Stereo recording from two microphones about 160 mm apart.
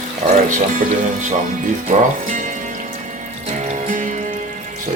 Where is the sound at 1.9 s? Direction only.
45° right (ahead or behind).